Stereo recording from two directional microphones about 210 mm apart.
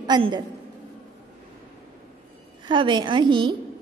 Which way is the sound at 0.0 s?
20° right (ahead or behind).